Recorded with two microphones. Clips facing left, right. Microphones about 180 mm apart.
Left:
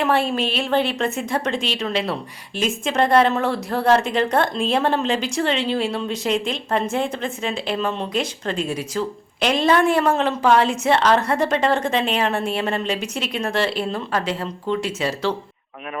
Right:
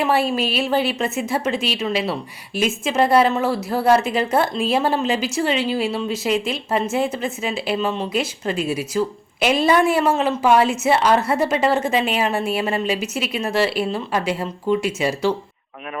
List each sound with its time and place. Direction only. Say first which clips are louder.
0.0 s a woman's voice: right 1 dB; 5° right (ahead or behind)